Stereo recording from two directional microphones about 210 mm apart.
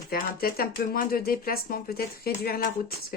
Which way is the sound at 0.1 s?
45° left (ahead or behind).